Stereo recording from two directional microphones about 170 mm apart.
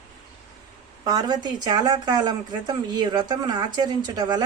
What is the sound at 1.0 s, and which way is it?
A woman's voice, 25° right (ahead or behind).